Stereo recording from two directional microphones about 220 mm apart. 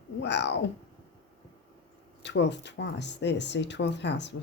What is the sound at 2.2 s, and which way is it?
Speech, 50° left (ahead or behind).